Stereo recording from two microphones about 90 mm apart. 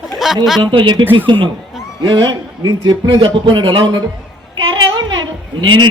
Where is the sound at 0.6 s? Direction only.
65° right (ahead or behind).